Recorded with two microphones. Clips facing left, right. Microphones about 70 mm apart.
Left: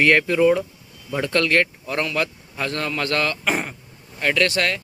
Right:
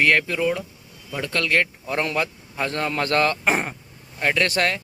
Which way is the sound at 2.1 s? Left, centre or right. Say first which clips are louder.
Left 1 dB; centre.